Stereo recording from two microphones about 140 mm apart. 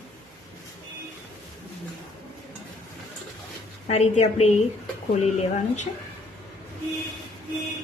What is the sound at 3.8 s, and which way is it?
Speech, 50° left (ahead or behind).